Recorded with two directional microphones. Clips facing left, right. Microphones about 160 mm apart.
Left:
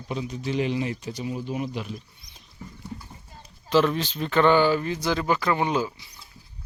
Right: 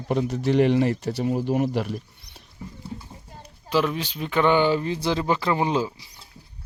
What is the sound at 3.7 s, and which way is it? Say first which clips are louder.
Speech: left 2 dB; 10° right (ahead or behind).